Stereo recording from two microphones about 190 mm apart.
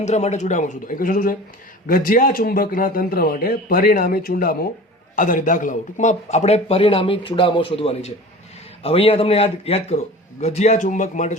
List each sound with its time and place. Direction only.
0.0 s a man's voice: 35° left (ahead or behind)